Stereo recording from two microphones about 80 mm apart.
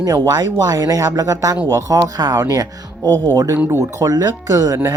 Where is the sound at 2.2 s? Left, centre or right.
Right.